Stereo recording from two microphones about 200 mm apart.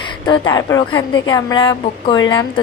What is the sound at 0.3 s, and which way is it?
A woman's voice, 20° left (ahead or behind).